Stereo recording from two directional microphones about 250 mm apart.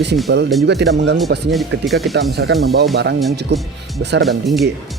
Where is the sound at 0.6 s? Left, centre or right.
Right.